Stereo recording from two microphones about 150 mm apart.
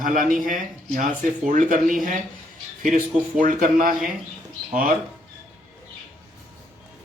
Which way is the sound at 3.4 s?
65° right (ahead or behind).